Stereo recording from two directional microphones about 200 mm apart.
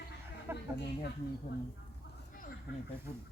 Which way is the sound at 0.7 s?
55° left (ahead or behind).